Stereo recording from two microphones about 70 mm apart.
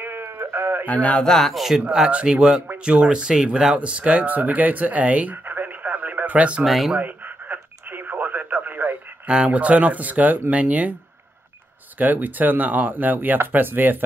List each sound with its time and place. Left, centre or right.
0.0 s a sound: right
0.8 s speech: centre
1.5 s speech: centre
1.8 s speech: centre
6.6 s speech: centre
7.0 s radio: right
9.3 s speech: centre
12.0 s speech: right